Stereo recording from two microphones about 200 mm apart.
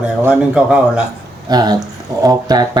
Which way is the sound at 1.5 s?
20° right (ahead or behind).